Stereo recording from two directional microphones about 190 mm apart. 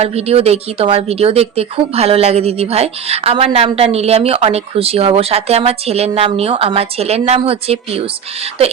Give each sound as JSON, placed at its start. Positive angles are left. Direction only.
{"t": 0.0, "sound": "speech", "side_deg": -35}